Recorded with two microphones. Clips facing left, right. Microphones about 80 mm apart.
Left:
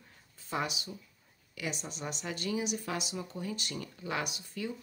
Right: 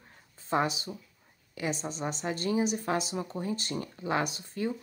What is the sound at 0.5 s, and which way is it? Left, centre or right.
A woman's voice, right.